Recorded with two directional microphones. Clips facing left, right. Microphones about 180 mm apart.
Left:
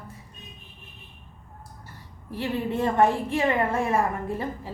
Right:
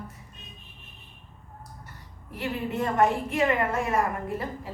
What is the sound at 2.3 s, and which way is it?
A woman's voice, 30° left (ahead or behind).